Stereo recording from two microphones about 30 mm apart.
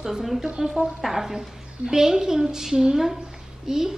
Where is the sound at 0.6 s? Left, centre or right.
Centre.